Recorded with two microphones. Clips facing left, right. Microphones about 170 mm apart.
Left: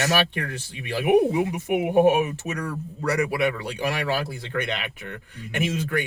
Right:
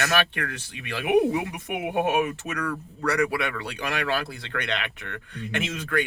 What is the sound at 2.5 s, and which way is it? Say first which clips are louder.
Speech: even; 25° left (ahead or behind).